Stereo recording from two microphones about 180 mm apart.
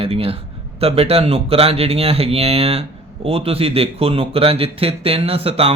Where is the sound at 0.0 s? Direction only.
30° right (ahead or behind).